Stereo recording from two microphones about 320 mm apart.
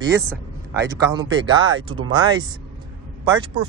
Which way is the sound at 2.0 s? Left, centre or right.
Right.